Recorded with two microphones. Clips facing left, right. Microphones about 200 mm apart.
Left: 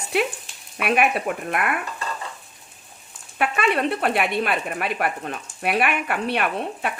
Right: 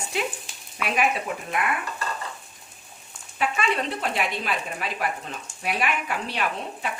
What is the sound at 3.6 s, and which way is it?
Speech, 60° left (ahead or behind).